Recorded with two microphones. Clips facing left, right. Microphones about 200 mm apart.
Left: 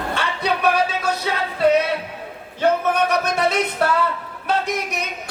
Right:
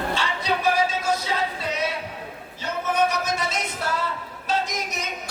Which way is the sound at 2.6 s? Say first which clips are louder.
Left 5 dB; 60° left (ahead or behind).